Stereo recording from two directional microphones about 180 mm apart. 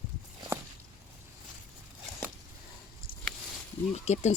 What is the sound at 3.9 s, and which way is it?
Speech, 35° left (ahead or behind).